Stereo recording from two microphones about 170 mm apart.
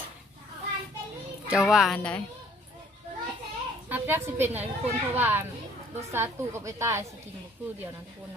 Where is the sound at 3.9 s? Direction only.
15° right (ahead or behind).